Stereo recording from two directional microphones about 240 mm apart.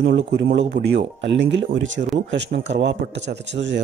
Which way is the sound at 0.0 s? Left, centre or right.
Right.